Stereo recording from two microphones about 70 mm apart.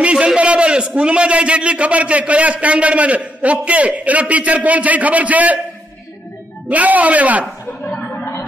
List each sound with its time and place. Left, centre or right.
0.0 s a man's voice: centre
6.7 s a man's voice: right
7.6 s a sound: centre